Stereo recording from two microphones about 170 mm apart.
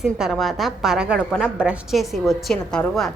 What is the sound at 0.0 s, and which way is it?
A woman's voice, centre (ahead or behind).